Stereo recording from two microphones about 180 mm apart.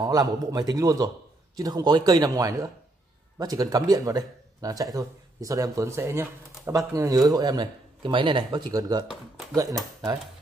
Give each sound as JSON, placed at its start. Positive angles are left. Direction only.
{"t": 0.0, "sound": "speech", "side_deg": -20}